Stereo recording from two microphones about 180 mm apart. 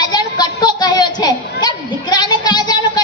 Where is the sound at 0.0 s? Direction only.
25° left (ahead or behind).